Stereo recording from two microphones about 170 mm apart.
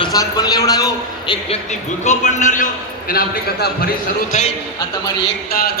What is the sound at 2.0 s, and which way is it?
Speech, 45° left (ahead or behind).